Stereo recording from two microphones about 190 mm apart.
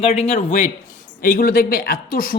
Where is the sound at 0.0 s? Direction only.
35° left (ahead or behind).